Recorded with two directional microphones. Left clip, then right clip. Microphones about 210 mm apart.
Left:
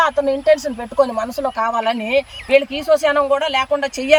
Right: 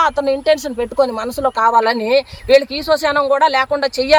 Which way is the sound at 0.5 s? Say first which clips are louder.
Right 1 dB; 25° right (ahead or behind).